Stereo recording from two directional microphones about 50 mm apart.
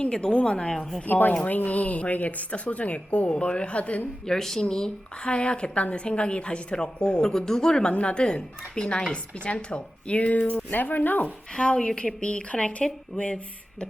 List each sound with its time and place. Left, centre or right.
0.0 s a woman's voice: centre
1.0 s a woman's voice: left
4.3 s a woman's voice: centre; by 10.3 s left
10.5 s speech: left
11.5 s a woman's voice: centre